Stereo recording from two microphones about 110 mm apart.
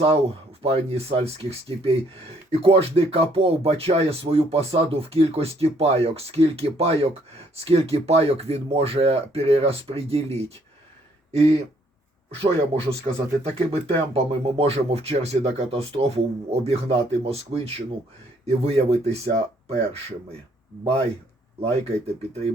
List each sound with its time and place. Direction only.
0.6 s speech: 65° right (ahead or behind)
21.6 s speech: 65° right (ahead or behind)